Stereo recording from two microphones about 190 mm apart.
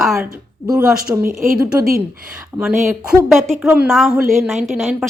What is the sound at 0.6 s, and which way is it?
Speech, 20° right (ahead or behind).